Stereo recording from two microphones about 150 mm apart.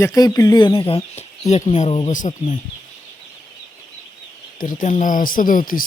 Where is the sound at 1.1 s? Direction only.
45° left (ahead or behind).